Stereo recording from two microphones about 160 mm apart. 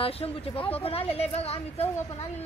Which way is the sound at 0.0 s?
35° left (ahead or behind).